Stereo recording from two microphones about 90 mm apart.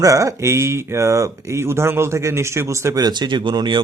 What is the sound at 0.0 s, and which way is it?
Speech, 40° right (ahead or behind).